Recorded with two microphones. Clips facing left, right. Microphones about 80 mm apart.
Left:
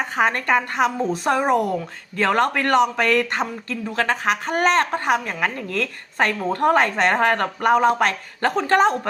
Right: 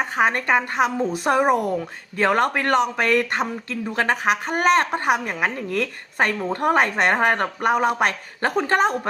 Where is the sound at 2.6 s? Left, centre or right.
Centre.